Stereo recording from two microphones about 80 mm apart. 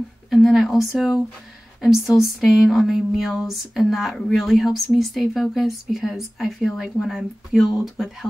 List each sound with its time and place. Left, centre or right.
0.3 s speech: centre